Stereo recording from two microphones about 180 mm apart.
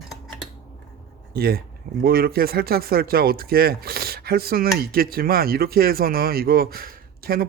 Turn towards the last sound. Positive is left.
turn(degrees=-55)  # may be behind; listen again after turning